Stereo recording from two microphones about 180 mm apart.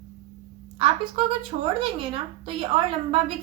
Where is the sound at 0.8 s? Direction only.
30° right (ahead or behind).